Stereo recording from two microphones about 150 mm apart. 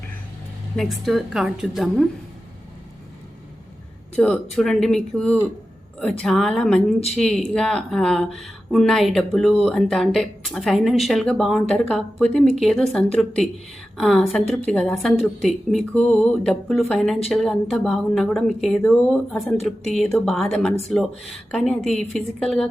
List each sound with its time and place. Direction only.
0.8 s speech: centre (ahead or behind)
4.1 s speech: 5° left (ahead or behind)